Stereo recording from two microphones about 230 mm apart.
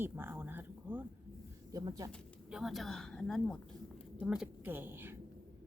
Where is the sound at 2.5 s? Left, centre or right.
Centre.